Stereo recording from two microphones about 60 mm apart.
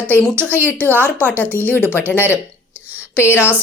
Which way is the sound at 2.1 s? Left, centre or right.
Right.